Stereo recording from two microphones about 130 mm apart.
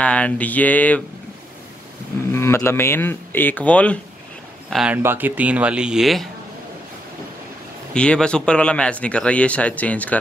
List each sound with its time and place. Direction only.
0.0 s speech: 10° left (ahead or behind)
2.3 s speech: 20° left (ahead or behind)
4.6 s speech: centre (ahead or behind)
4.9 s speech: 15° right (ahead or behind)
7.9 s speech: 5° left (ahead or behind)